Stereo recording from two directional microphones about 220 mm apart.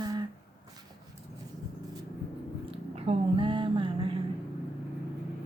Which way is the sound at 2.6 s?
25° right (ahead or behind).